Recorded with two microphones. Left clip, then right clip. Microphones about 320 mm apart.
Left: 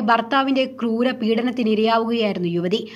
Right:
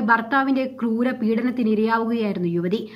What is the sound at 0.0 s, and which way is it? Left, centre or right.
Speech, centre.